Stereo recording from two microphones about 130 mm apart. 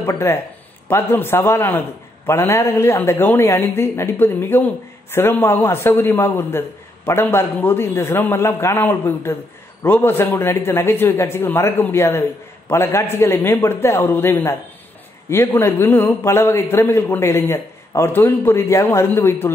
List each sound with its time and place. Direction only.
0.0 s a man's voice: 20° left (ahead or behind)